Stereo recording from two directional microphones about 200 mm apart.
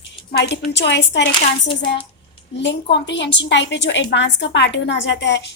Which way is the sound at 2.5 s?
60° left (ahead or behind).